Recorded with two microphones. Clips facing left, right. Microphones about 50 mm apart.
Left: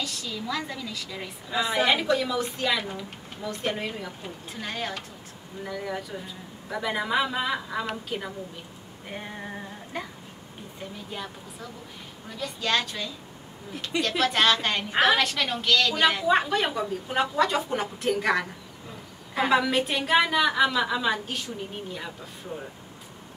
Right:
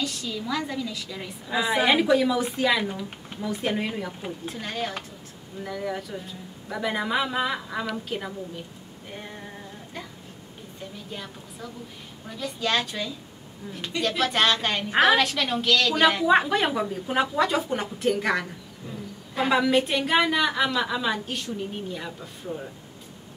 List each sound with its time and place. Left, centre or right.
0.0 s a woman's voice: centre
9.1 s female singing: centre
10.8 s a woman's voice: centre